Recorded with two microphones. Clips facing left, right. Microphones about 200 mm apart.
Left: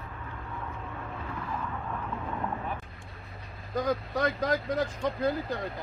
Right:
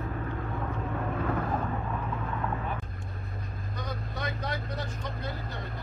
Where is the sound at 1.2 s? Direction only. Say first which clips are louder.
Right 5 dB; 55° right (ahead or behind).